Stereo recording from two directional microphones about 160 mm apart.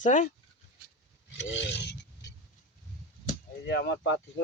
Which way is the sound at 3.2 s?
85° left.